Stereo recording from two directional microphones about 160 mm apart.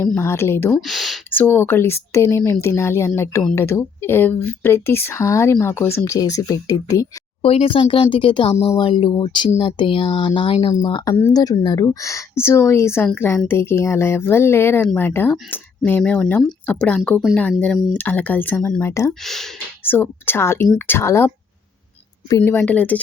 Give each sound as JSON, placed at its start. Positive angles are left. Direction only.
{"t": 0.0, "sound": "speech", "side_deg": 15}
{"t": 0.7, "sound": "speech", "side_deg": 0}
{"t": 1.3, "sound": "speech", "side_deg": 10}
{"t": 7.4, "sound": "speech", "side_deg": 35}
{"t": 19.2, "sound": "speech", "side_deg": 0}
{"t": 19.8, "sound": "speech", "side_deg": 15}